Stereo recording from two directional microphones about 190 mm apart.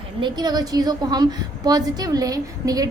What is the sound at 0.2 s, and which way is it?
A woman's voice, 20° right (ahead or behind).